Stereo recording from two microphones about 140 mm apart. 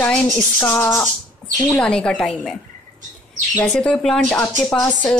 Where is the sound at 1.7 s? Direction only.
5° left (ahead or behind).